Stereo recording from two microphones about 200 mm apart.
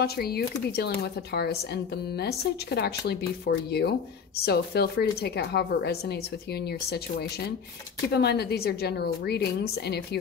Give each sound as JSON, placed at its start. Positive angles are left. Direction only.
{"t": 0.0, "sound": "speech", "side_deg": 50}